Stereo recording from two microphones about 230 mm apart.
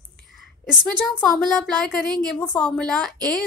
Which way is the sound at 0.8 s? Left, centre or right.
Centre.